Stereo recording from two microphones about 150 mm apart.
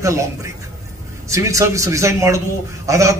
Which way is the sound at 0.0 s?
20° right (ahead or behind).